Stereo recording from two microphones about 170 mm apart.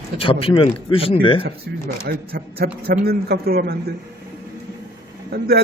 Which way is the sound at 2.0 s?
65° right (ahead or behind).